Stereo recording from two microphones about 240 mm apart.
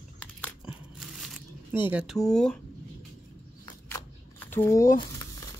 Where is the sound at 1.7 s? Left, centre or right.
Centre.